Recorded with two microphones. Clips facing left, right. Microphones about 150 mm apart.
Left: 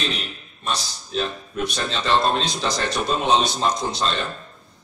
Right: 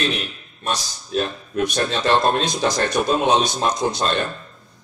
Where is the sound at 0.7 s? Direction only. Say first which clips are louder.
Right 2 dB; 55° right (ahead or behind).